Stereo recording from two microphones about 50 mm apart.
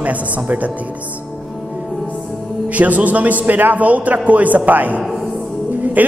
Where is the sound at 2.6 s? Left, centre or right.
Right.